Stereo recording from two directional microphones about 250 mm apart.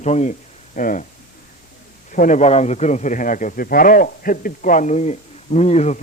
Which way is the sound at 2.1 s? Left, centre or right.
Left.